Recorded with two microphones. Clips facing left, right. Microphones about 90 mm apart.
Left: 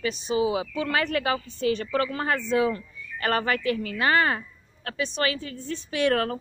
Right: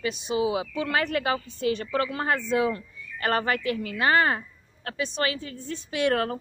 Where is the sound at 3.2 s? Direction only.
25° right (ahead or behind).